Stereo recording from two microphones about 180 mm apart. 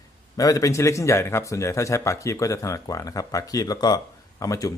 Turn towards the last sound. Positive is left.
turn(degrees=15)  # may be behind; listen again after turning